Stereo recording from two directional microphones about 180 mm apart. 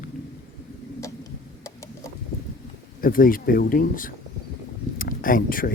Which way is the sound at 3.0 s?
50° left (ahead or behind).